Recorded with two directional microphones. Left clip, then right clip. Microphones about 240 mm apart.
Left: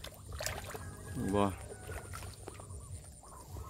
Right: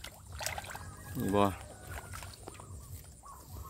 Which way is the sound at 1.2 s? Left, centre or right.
Centre.